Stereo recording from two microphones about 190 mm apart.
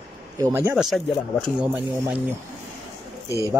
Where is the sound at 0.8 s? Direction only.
Centre (ahead or behind).